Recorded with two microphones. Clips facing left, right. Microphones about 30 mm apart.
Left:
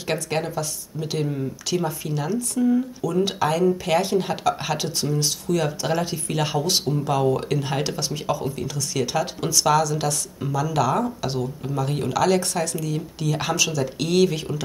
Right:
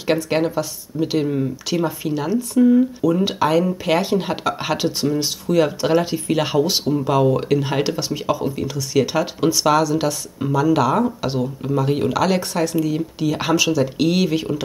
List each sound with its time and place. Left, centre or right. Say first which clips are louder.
0.0 s speech: right 6 dB; centre